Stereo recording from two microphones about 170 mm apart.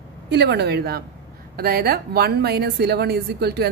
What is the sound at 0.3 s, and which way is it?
A woman's voice, 75° right (ahead or behind).